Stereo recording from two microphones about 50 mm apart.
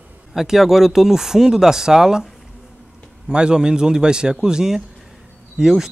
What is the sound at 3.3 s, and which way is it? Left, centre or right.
Speech, centre.